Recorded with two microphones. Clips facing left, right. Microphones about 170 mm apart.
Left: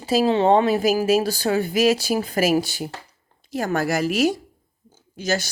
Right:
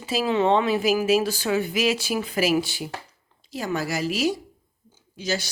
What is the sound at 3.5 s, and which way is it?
A woman's voice, 50° left (ahead or behind).